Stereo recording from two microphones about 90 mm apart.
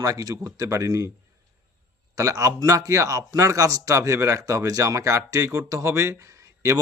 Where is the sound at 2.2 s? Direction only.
35° right (ahead or behind).